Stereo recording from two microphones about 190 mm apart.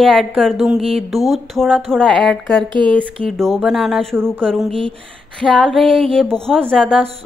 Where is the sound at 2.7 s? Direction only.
25° right (ahead or behind).